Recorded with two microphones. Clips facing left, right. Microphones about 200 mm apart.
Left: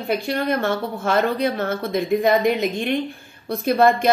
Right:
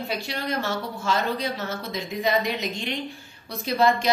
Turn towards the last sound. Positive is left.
turn(degrees=55)  # may be behind; listen again after turning